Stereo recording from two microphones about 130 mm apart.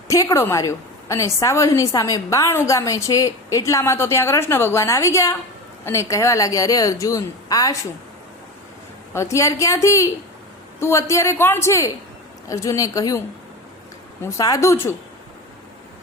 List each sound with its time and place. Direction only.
0.1 s a woman's voice: 25° left (ahead or behind)
9.1 s a woman's voice: 20° left (ahead or behind)